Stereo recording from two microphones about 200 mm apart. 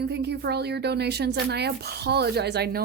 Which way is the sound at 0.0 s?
55° right (ahead or behind).